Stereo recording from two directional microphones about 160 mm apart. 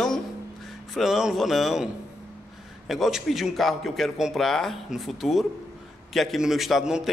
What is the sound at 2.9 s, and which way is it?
A man's voice, centre (ahead or behind).